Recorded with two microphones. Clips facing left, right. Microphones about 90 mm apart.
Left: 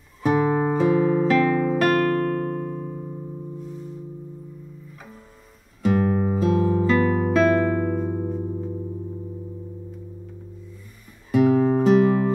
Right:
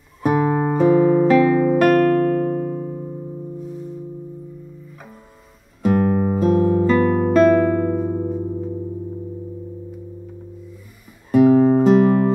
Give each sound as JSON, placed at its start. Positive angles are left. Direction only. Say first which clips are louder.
{"t": 0.2, "sound": "music", "louder": "right 2 dB", "side_deg": -5}
{"t": 5.8, "sound": "music", "louder": "right 3 dB", "side_deg": -5}
{"t": 11.3, "sound": "music", "louder": "right 5 dB", "side_deg": 0}